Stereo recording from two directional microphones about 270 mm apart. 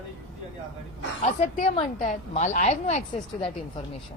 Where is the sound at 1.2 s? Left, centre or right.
Left.